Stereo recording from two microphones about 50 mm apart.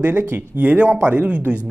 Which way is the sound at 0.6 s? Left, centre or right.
Right.